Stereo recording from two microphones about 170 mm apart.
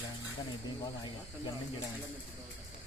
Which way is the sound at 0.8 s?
25° left (ahead or behind).